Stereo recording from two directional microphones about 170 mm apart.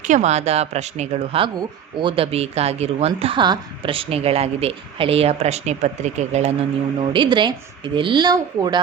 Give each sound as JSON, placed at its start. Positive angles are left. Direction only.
{"t": 0.0, "sound": "speech", "side_deg": -45}
{"t": 7.0, "sound": "speech", "side_deg": -25}